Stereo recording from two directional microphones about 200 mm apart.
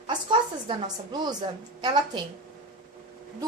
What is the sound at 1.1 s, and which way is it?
A woman's voice, 20° right (ahead or behind).